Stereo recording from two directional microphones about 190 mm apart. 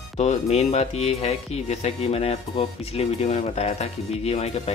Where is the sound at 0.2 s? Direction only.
35° left (ahead or behind).